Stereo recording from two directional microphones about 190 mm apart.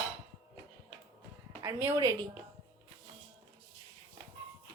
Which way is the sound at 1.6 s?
15° right (ahead or behind).